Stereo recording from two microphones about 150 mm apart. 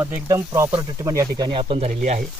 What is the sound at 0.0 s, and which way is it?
Speech, 15° right (ahead or behind).